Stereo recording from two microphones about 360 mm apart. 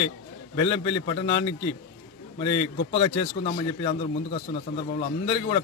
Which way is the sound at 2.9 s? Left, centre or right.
Centre.